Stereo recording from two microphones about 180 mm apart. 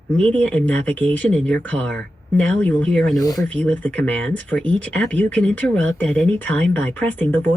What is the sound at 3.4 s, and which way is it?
Speech, 5° left (ahead or behind).